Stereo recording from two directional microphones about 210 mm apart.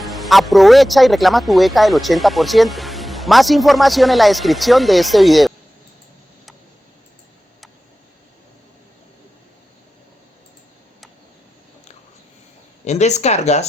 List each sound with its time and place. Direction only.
0.0 s speech: centre (ahead or behind)
12.8 s speech: 30° left (ahead or behind)